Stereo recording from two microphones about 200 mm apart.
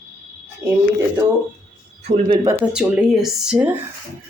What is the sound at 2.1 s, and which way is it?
Speech, 25° right (ahead or behind).